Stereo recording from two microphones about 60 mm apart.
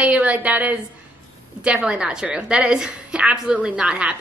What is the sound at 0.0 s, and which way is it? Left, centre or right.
A woman's voice, right.